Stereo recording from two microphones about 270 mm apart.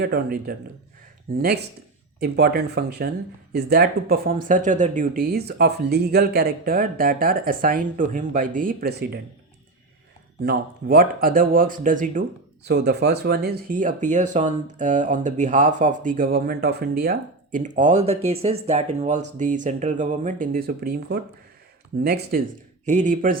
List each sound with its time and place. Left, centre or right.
0.0 s speech: right
10.4 s speech: right